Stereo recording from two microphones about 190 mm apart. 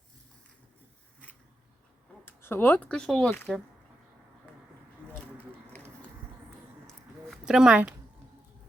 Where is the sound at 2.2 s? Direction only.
10° left (ahead or behind).